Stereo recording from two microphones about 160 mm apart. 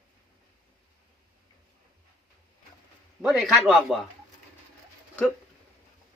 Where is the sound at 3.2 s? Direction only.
5° right (ahead or behind).